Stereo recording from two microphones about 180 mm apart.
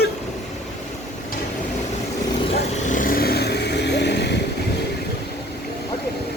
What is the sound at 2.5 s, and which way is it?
Vehicle, 45° left (ahead or behind).